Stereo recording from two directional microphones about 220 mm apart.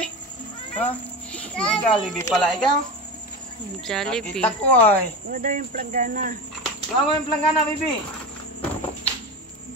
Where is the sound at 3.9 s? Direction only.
Centre (ahead or behind).